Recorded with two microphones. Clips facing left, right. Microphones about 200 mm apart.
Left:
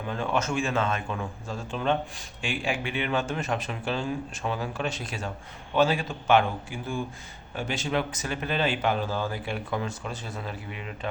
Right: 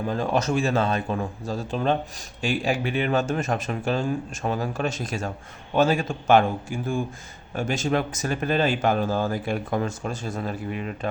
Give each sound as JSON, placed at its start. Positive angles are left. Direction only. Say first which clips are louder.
{"t": 0.1, "sound": "a man's voice", "louder": "right 3 dB", "side_deg": -35}